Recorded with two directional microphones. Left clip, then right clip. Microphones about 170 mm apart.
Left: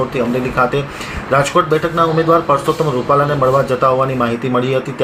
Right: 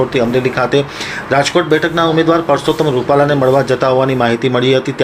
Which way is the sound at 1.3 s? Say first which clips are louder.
Right 1 dB; 30° right (ahead or behind).